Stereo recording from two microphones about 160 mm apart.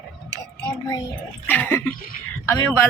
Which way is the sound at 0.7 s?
25° left (ahead or behind).